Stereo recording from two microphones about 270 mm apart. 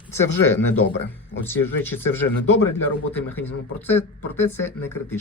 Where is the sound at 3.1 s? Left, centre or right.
Centre.